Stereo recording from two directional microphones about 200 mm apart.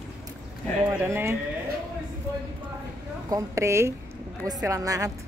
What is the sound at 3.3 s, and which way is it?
A woman's voice, 15° right (ahead or behind).